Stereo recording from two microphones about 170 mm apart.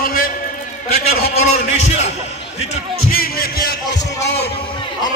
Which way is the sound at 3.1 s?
60° left (ahead or behind).